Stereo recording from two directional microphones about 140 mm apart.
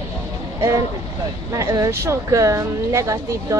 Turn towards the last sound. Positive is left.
turn(degrees=-20)  # may be behind; listen again after turning